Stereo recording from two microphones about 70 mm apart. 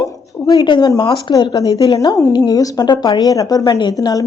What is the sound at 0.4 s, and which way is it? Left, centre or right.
A woman's voice, left.